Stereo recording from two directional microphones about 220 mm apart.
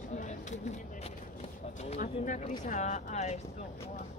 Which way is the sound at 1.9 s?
30° left (ahead or behind).